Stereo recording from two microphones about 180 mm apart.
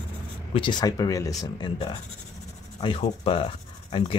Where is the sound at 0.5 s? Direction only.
25° left (ahead or behind).